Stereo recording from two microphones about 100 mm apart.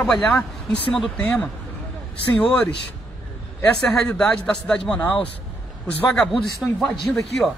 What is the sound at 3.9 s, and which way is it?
Speech, 10° left (ahead or behind).